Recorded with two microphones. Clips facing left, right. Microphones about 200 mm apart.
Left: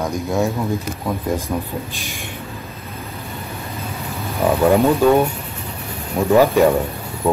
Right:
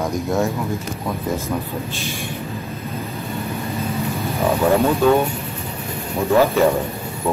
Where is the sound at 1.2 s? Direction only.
15° left (ahead or behind).